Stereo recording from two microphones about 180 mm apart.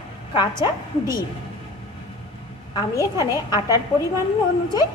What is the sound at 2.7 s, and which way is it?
Speech, 20° left (ahead or behind).